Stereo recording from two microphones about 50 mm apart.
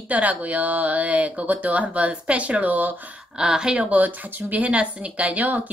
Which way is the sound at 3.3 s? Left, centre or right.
Centre.